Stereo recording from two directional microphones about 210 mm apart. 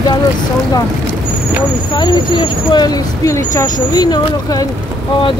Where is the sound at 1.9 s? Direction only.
20° left (ahead or behind).